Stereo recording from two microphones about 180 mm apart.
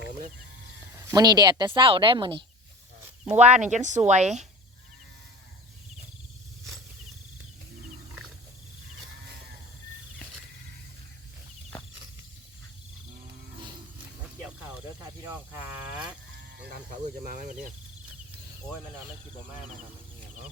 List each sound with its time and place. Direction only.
0.9 s speech: 20° right (ahead or behind)
3.3 s a woman's voice: 40° right (ahead or behind)
14.6 s snake: 10° right (ahead or behind)
16.6 s speech: 55° right (ahead or behind)